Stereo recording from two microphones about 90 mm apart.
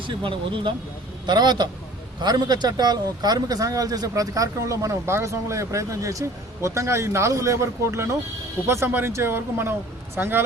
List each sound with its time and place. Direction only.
0.0 s speech: 65° right (ahead or behind)
1.3 s a man's voice: 50° right (ahead or behind); by 10.4 s 25° right (ahead or behind)